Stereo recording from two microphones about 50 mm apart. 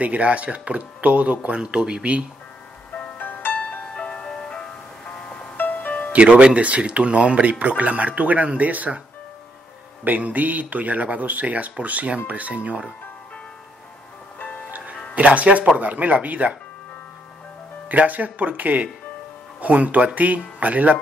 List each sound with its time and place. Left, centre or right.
0.0 s speech: right
2.9 s music: left
3.9 s music: left
5.6 s music: left
6.1 s speech: right
10.0 s speech: right
15.1 s speech: right
17.8 s speech: right